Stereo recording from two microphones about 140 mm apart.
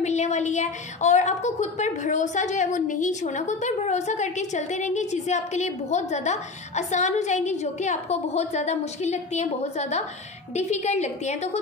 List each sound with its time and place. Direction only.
0.0 s a woman's voice: 55° left (ahead or behind)